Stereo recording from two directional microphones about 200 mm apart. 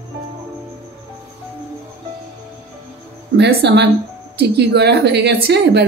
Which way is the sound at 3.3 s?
55° right (ahead or behind).